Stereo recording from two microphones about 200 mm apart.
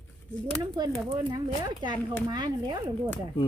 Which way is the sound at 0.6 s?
20° right (ahead or behind).